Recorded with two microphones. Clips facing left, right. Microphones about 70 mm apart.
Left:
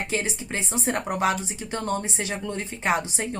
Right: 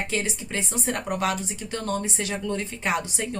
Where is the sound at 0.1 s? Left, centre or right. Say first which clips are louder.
Even; left.